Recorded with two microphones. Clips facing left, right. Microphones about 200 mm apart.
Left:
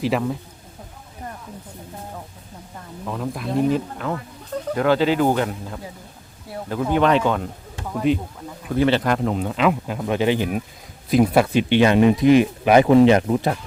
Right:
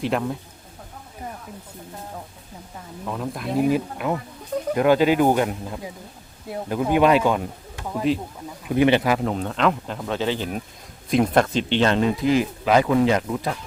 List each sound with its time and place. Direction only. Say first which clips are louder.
0.0 s speech: left 2 dB; centre (ahead or behind)
3.1 s speech: left 1 dB; centre (ahead or behind)
6.5 s speech: right 1 dB; 15° right (ahead or behind); by 8.2 s centre (ahead or behind)
8.7 s speech: right 1 dB; 15° right (ahead or behind); by 13.6 s 25° left (ahead or behind)